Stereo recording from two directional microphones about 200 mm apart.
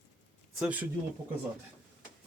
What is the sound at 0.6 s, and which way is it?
Speech, 5° right (ahead or behind).